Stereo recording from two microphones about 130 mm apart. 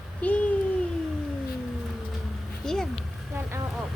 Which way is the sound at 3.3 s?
20° right (ahead or behind).